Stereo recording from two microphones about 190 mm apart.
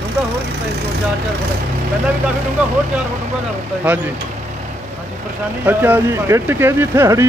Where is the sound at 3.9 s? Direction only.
5° right (ahead or behind).